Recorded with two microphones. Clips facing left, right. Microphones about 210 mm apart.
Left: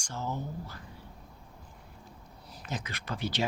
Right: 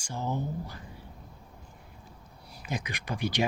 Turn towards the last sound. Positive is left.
turn(degrees=-15)  # may be behind; listen again after turning